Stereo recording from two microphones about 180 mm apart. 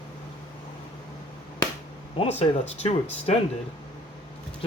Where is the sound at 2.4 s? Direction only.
35° left (ahead or behind).